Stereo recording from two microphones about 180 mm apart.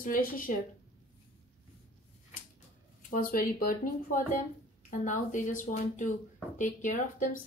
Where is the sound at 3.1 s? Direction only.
55° left (ahead or behind).